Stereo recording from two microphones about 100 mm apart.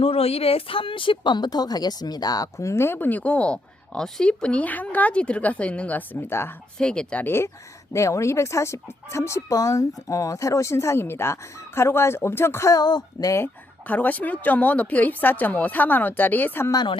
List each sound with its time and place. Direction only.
0.0 s speech: 75° left (ahead or behind); by 6.5 s 25° left (ahead or behind)
6.7 s speech: 10° left (ahead or behind)
7.3 s speech: 25° left (ahead or behind)
12.7 s speech: 45° left (ahead or behind)
13.3 s speech: 20° left (ahead or behind)
16.7 s speech: 50° left (ahead or behind)